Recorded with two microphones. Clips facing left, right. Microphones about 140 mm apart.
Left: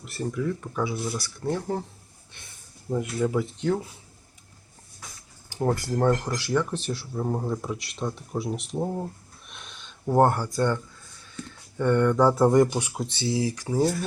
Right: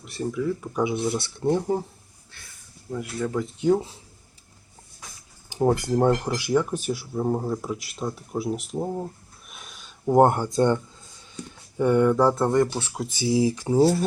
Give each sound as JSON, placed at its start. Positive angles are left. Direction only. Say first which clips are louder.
{"t": 0.0, "sound": "speech", "louder": "right 2 dB", "side_deg": 0}
{"t": 0.8, "sound": "speech", "louder": "right 6 dB", "side_deg": -20}
{"t": 2.9, "sound": "speech", "louder": "left 3 dB", "side_deg": 20}
{"t": 3.6, "sound": "speech", "louder": "right 6 dB", "side_deg": -10}
{"t": 5.5, "sound": "speech", "louder": "right 4 dB", "side_deg": -15}
{"t": 9.5, "sound": "a sound", "louder": "even", "side_deg": -5}
{"t": 12.3, "sound": "speech", "louder": "left 2 dB", "side_deg": 10}
{"t": 13.1, "sound": "speech", "louder": "right 5 dB", "side_deg": -15}
{"t": 13.6, "sound": "speech", "louder": "right 5 dB", "side_deg": -30}